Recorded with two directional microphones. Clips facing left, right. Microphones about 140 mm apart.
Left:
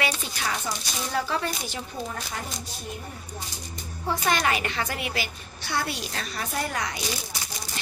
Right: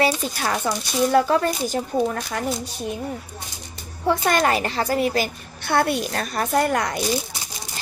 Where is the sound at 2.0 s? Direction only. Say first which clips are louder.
Right 8 dB; 60° right (ahead or behind).